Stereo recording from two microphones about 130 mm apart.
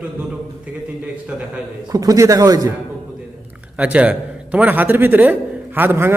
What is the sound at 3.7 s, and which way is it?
A man's voice, 10° right (ahead or behind).